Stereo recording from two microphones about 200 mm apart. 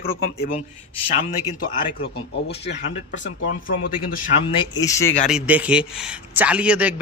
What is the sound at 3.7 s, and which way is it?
Speech, 45° left (ahead or behind).